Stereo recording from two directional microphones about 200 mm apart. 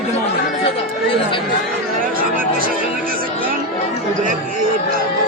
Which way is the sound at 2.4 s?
45° right (ahead or behind).